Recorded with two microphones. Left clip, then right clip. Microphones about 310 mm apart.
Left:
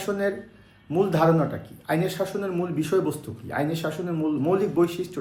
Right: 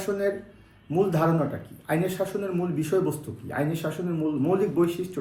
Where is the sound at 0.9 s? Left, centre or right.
Centre.